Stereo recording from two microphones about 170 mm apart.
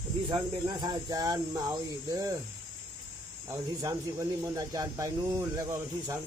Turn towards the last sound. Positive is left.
turn(degrees=-20)  # may be behind; listen again after turning